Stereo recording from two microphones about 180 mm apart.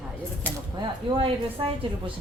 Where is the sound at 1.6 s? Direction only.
30° right (ahead or behind).